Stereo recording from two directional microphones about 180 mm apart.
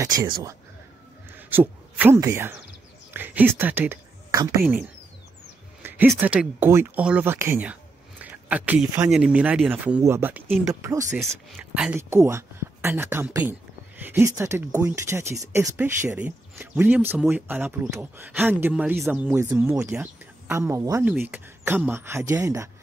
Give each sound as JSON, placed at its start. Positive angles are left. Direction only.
{"t": 0.0, "sound": "speech", "side_deg": -15}
{"t": 1.3, "sound": "a man's voice", "side_deg": -10}
{"t": 5.8, "sound": "a sound", "side_deg": -10}
{"t": 6.1, "sound": "speech", "side_deg": -10}